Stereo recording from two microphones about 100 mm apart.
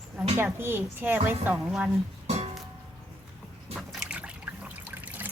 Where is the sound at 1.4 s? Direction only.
10° right (ahead or behind).